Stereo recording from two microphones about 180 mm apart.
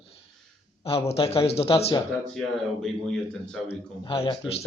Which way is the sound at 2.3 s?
5° left (ahead or behind).